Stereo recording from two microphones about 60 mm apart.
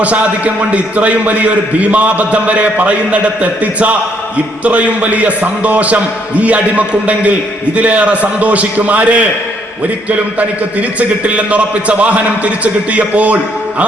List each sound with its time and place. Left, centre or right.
0.0 s a man's voice: right
10.8 s a man's voice: right